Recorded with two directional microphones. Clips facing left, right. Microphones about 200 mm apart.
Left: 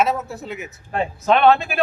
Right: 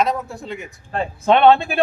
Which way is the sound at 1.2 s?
25° right (ahead or behind).